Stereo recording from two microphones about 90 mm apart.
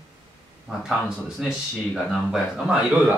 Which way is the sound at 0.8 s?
5° right (ahead or behind).